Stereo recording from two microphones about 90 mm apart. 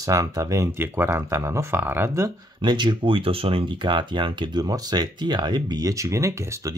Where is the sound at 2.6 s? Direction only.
60° right (ahead or behind); by 6.7 s 35° right (ahead or behind).